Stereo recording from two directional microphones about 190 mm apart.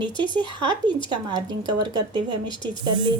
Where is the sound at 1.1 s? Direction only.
25° right (ahead or behind).